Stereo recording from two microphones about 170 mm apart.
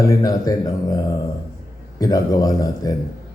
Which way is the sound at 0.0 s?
20° left (ahead or behind).